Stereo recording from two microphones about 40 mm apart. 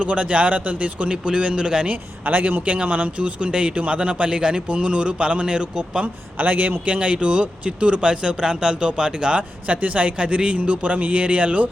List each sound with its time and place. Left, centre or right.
0.0 s a man's voice: right
1.0 s speech: right
1.9 s speech: right
2.6 s speech: right
6.4 s speech: right
6.9 s speech: right
9.6 s a man's voice: right